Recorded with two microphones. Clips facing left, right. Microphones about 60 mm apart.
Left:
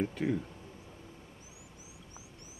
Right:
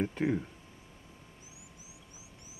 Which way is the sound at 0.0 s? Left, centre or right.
Right.